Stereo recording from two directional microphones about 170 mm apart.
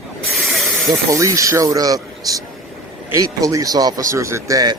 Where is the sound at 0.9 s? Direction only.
20° right (ahead or behind).